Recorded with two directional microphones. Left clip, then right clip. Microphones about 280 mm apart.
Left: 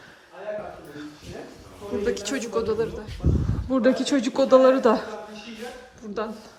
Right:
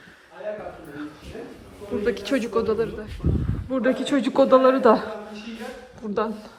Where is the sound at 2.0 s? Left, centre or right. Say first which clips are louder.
Right 4 dB; centre.